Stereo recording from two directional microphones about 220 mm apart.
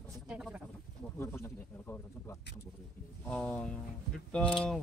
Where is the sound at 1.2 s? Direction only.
10° left (ahead or behind).